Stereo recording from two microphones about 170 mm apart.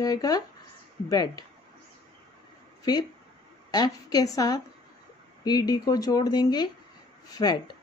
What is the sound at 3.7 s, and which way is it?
A woman's voice, 25° left (ahead or behind).